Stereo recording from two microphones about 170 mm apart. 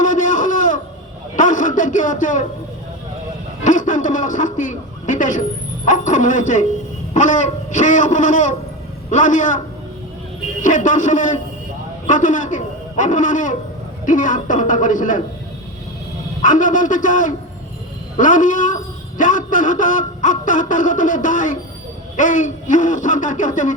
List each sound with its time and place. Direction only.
0.0 s a sound: 50° left (ahead or behind)
3.6 s a man's voice: 50° left (ahead or behind)
10.6 s a man's voice: 50° left (ahead or behind)
16.4 s a man's voice: 50° left (ahead or behind)